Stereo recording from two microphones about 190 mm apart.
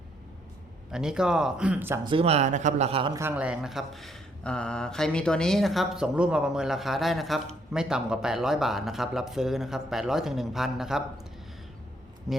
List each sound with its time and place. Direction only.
0.9 s speech: 5° right (ahead or behind)
2.0 s speech: 30° right (ahead or behind)
3.2 s speech: 10° right (ahead or behind)
12.3 s speech: centre (ahead or behind)